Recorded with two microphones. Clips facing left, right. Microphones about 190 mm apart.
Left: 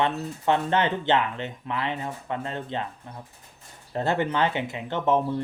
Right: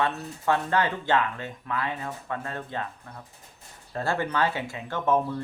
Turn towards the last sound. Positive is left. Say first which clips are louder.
# left 2 dB
turn(degrees=20)  # may be behind; listen again after turning